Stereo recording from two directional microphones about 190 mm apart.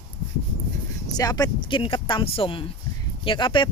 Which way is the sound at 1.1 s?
20° left (ahead or behind).